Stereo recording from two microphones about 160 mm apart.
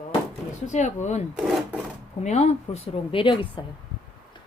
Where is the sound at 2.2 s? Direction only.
45° left (ahead or behind).